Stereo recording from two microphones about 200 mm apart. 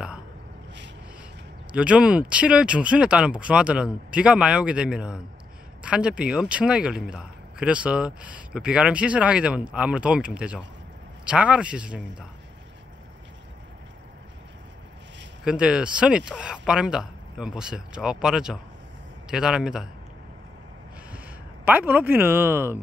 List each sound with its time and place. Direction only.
1.7 s a man's voice: 5° right (ahead or behind)
15.4 s a man's voice: 5° right (ahead or behind)
21.6 s speech: 10° right (ahead or behind)